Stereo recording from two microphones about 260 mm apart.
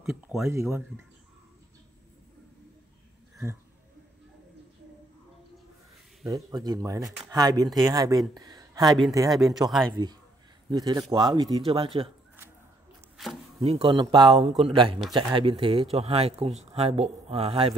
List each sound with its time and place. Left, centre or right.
0.0 s speech: centre
6.2 s speech: centre
8.4 s a sound: centre
9.1 s speech: centre
13.6 s speech: right